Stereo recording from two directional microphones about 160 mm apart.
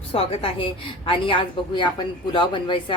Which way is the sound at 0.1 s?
35° left (ahead or behind).